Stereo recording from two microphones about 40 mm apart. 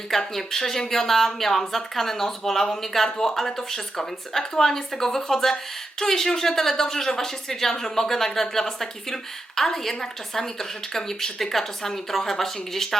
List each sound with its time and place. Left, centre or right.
0.1 s a woman's voice: centre